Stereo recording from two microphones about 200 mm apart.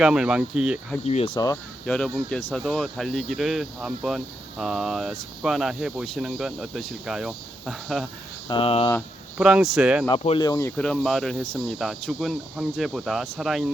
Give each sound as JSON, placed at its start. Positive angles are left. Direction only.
{"t": 0.0, "sound": "speech", "side_deg": -5}
{"t": 1.0, "sound": "speech", "side_deg": 30}
{"t": 1.8, "sound": "speech", "side_deg": 5}
{"t": 8.4, "sound": "speech", "side_deg": 25}
{"t": 9.4, "sound": "speech", "side_deg": -5}
{"t": 10.1, "sound": "speech", "side_deg": 20}